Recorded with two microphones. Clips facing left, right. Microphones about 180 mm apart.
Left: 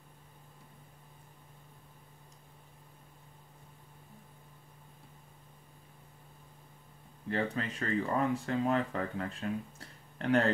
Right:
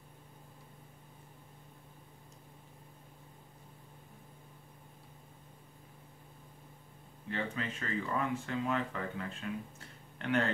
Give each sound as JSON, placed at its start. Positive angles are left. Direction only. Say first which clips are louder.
{"t": 7.2, "sound": "speech", "louder": "left 4 dB", "side_deg": 40}